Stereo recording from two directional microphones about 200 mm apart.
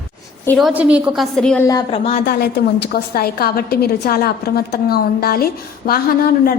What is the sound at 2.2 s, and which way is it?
A woman's voice, 55° left (ahead or behind).